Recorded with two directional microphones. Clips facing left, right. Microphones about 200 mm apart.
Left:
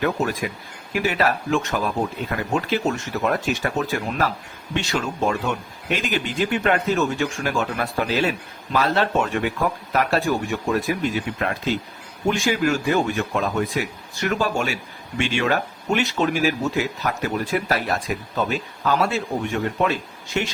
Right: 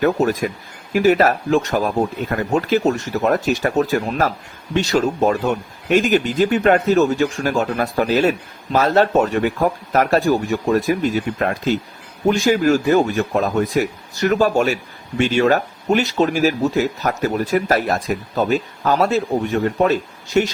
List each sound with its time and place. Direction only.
0.0 s speech: 40° right (ahead or behind)